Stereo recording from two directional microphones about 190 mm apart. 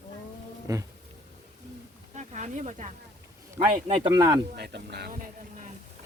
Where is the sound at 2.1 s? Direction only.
40° right (ahead or behind).